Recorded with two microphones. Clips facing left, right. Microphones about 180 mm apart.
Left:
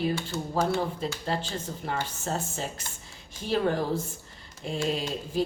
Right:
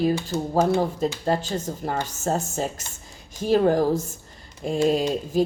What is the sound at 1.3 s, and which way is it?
A woman's voice, 45° right (ahead or behind).